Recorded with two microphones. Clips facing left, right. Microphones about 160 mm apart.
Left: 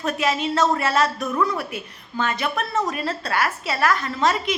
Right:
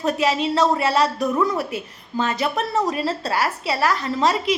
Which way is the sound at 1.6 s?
35° right (ahead or behind).